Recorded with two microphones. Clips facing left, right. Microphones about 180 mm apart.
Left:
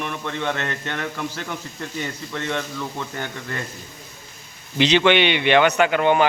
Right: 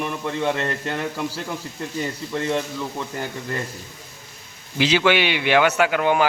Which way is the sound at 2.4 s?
30° right (ahead or behind).